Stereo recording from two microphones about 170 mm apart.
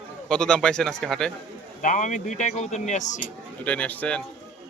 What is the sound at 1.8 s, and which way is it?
Speech, 50° left (ahead or behind).